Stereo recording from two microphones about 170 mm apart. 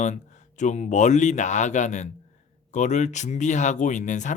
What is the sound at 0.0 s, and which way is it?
Speech, 45° left (ahead or behind).